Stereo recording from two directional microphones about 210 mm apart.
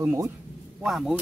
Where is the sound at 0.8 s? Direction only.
Centre (ahead or behind).